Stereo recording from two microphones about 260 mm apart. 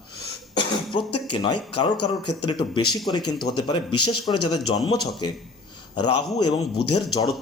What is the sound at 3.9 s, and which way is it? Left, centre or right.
Speech, left.